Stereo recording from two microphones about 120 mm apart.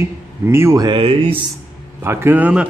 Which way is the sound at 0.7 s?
35° right (ahead or behind).